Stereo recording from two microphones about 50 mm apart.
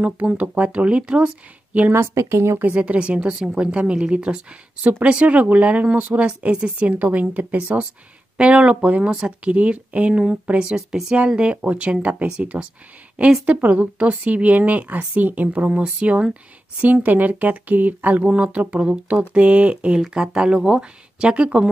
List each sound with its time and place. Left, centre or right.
0.4 s speech: right
2.1 s speech: right
2.6 s speech: right
6.2 s speech: centre
6.8 s speech: right
10.6 s speech: centre
11.5 s speech: right
13.5 s speech: right
15.8 s speech: right